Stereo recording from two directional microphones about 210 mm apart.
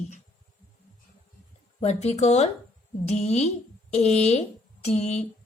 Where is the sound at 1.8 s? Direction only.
30° left (ahead or behind).